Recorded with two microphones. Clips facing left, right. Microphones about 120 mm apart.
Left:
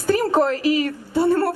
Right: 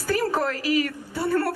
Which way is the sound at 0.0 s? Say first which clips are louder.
Left 6 dB; 25° left (ahead or behind).